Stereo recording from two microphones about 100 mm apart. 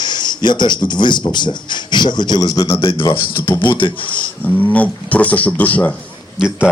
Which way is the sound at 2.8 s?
60° left (ahead or behind).